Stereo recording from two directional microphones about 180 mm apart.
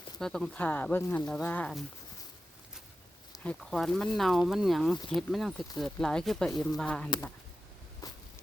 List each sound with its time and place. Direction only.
0.2 s speech: centre (ahead or behind)
3.4 s speech: 5° left (ahead or behind)
8.0 s a sound: 20° left (ahead or behind)